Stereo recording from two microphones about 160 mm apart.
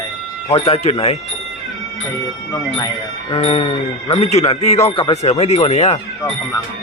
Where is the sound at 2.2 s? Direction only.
25° left (ahead or behind).